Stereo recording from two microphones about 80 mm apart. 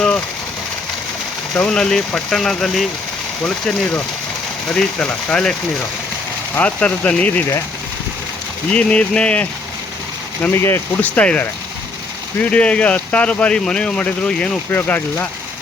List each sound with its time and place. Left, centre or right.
1.5 s speech: centre
6.6 s speech: centre
8.7 s speech: centre
10.5 s speech: left
11.0 s speech: centre
14.7 s speech: left